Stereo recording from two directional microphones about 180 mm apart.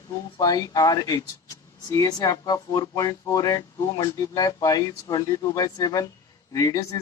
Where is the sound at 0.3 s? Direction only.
20° left (ahead or behind).